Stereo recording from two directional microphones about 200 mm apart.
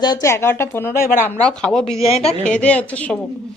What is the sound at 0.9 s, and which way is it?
Speech, 45° left (ahead or behind).